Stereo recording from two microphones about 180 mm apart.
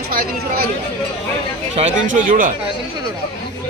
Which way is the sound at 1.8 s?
35° right (ahead or behind).